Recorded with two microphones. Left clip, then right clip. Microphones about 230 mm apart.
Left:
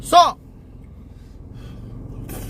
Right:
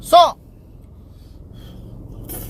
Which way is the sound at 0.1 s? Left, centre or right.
Left.